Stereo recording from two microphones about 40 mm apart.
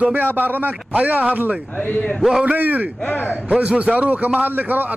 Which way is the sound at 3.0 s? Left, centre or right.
Left.